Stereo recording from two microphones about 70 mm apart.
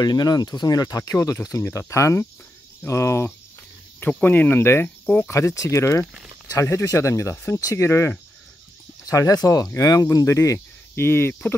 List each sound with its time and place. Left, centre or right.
0.0 s speech: left
1.2 s speech: left
4.2 s speech: left
4.8 s speech: centre
5.3 s speech: left
9.0 s speech: left
11.0 s speech: left